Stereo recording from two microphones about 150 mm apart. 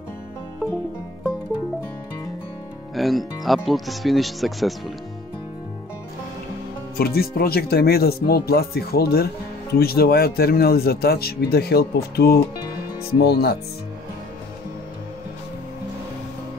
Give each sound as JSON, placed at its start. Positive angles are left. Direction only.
{"t": 2.9, "sound": "speech", "side_deg": 0}
{"t": 7.0, "sound": "speech", "side_deg": 90}